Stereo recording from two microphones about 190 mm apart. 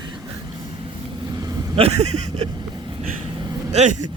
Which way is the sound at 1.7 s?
35° right (ahead or behind).